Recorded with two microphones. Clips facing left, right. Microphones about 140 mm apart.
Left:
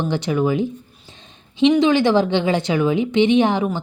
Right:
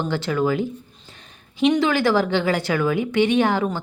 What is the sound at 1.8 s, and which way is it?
A woman's voice, 20° left (ahead or behind).